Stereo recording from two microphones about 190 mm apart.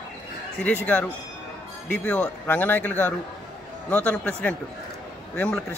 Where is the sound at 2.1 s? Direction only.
5° left (ahead or behind).